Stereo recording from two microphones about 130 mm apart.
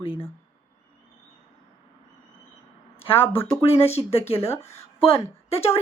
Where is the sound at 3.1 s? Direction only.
15° left (ahead or behind).